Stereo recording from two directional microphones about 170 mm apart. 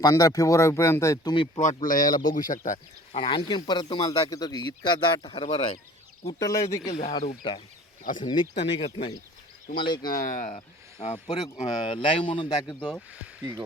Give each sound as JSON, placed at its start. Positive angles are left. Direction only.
{"t": 0.0, "sound": "speech", "side_deg": 20}
{"t": 1.5, "sound": "speech", "side_deg": 50}
{"t": 10.1, "sound": "speech", "side_deg": 50}
{"t": 10.5, "sound": "speech", "side_deg": 35}
{"t": 13.4, "sound": "speech", "side_deg": -20}